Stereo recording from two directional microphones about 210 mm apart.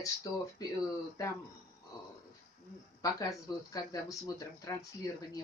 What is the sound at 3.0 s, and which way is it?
Speech, 15° left (ahead or behind).